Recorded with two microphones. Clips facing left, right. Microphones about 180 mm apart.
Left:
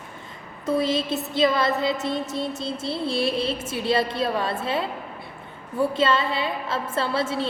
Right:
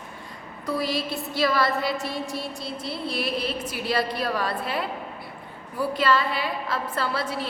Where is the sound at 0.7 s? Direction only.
25° left (ahead or behind).